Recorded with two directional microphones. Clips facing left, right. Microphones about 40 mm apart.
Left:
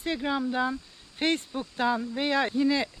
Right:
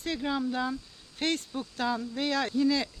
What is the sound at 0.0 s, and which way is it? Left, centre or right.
Speech, centre.